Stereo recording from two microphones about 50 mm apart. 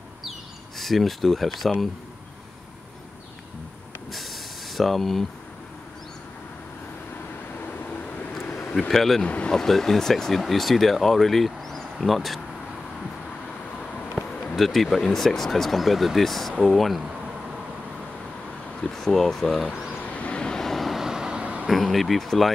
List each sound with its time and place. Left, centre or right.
0.2 s bird: centre
4.1 s hiss: centre
8.7 s speech: centre
9.2 s speech: left
9.6 s speech: centre
13.7 s vehicle: left
14.5 s speech: centre
18.8 s speech: centre
20.0 s vehicle: left
20.6 s vehicle: centre
21.4 s vehicle: right
21.6 s speech: centre